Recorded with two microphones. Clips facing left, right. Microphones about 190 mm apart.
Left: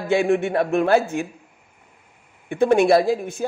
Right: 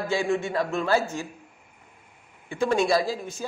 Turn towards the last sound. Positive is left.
turn(degrees=60)  # may be behind; listen again after turning